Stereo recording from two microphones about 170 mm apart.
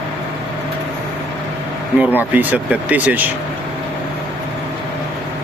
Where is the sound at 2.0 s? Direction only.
10° right (ahead or behind).